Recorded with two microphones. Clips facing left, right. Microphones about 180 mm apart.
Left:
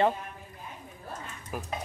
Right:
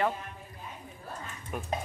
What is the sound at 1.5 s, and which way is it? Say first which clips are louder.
Speech: even; 5° left (ahead or behind).